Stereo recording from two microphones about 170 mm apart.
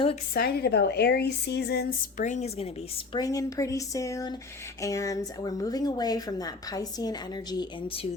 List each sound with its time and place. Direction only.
0.3 s a woman's voice: 65° left (ahead or behind)
2.2 s speech: 45° left (ahead or behind)
3.1 s speech: 20° left (ahead or behind)